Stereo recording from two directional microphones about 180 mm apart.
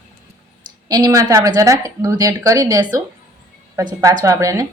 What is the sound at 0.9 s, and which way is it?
A woman's voice, 20° right (ahead or behind).